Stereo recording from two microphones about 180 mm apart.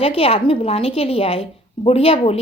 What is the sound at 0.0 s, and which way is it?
A woman's voice, 30° left (ahead or behind).